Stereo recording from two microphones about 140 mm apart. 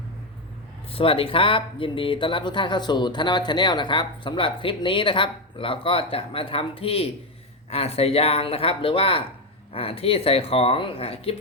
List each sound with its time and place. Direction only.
0.9 s speech: 40° left (ahead or behind)